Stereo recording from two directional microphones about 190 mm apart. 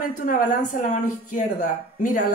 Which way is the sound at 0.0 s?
45° left (ahead or behind).